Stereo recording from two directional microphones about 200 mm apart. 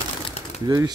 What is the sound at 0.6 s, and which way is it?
Speech, 20° right (ahead or behind).